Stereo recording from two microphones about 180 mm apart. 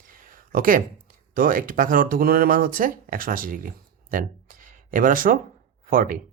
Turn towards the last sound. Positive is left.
turn(degrees=-50)  # may be behind; listen again after turning